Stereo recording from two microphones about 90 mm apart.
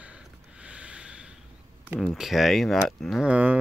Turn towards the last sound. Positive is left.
turn(degrees=-15)  # may be behind; listen again after turning